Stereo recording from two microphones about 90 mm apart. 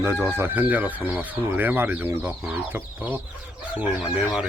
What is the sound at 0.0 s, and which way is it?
Speech, 30° right (ahead or behind).